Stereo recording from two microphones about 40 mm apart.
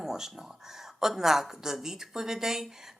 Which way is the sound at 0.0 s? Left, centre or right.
Centre.